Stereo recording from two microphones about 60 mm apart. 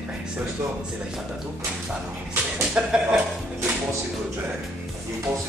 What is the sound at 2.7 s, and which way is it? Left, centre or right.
Speech, centre.